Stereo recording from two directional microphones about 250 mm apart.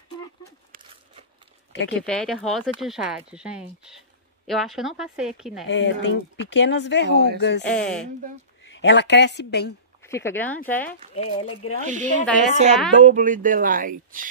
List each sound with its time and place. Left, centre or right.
1.7 s speech: left
2.0 s speech: centre
5.7 s speech: left
7.7 s speech: centre
8.7 s speech: left
10.0 s speech: centre
11.1 s speech: left
11.9 s a woman's voice: right